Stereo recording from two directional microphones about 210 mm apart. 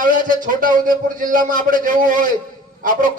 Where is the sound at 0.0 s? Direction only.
40° right (ahead or behind).